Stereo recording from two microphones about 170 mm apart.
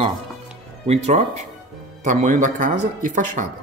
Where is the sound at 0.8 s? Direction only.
40° right (ahead or behind).